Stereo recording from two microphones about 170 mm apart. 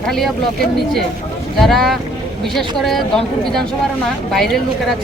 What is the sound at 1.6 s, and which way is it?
Speech, centre (ahead or behind).